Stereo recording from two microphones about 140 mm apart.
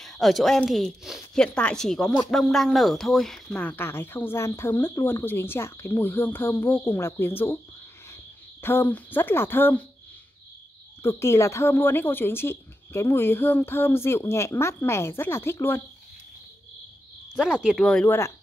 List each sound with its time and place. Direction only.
0.0 s speech: centre (ahead or behind)
3.4 s a woman's voice: 15° left (ahead or behind)
11.0 s a woman's voice: 20° left (ahead or behind)
17.3 s speech: 5° right (ahead or behind); by 18.3 s 15° left (ahead or behind)